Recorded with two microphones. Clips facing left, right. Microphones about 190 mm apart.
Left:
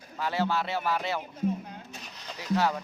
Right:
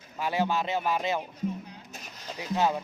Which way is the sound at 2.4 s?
20° right (ahead or behind).